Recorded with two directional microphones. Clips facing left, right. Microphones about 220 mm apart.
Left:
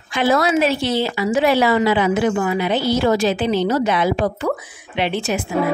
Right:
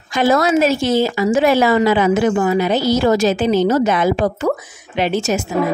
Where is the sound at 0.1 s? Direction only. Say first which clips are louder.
Right 3 dB; 45° right (ahead or behind).